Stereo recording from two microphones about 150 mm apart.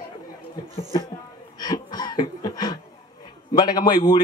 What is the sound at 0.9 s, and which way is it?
A woman's voice, 30° left (ahead or behind).